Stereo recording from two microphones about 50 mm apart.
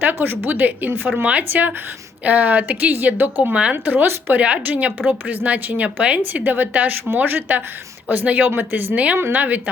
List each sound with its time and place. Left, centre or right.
0.0 s speech: right
1.2 s a woman's voice: right
3.5 s a woman's voice: right
3.8 s speech: right
4.4 s speech: right
6.4 s speech: right